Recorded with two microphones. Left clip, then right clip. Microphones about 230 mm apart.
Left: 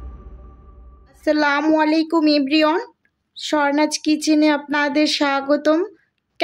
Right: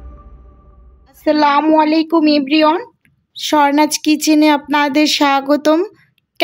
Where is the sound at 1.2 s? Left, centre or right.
Right.